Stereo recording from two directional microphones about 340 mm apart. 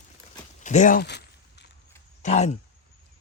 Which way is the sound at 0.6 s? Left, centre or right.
Left.